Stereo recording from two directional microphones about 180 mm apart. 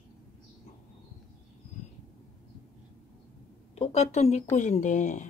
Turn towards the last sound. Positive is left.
turn(degrees=45)  # may be behind; listen again after turning